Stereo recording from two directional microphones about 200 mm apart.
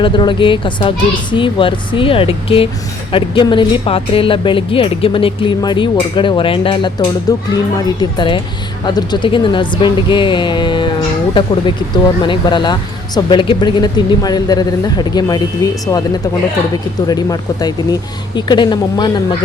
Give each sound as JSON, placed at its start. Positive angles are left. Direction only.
{"t": 0.0, "sound": "speech", "side_deg": 25}
{"t": 12.2, "sound": "speech", "side_deg": 25}
{"t": 17.1, "sound": "speech", "side_deg": 20}